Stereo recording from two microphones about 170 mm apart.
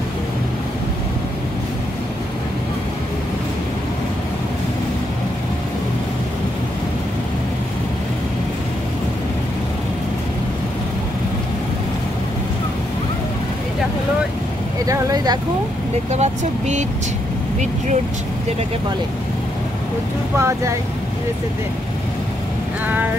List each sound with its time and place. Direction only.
14.9 s a sound: 20° right (ahead or behind)
16.1 s speech: 40° right (ahead or behind)
20.3 s speech: 15° right (ahead or behind)